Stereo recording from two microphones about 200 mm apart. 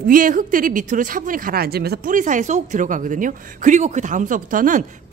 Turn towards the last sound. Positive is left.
turn(degrees=-40)  # may be behind; listen again after turning